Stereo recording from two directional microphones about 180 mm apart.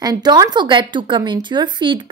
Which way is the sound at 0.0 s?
20° right (ahead or behind).